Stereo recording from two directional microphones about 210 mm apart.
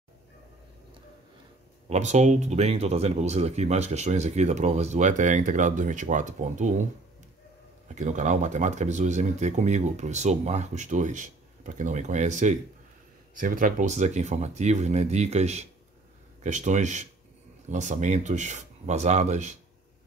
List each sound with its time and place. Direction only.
1.9 s speech: 35° right (ahead or behind)
7.9 s speech: 35° right (ahead or behind)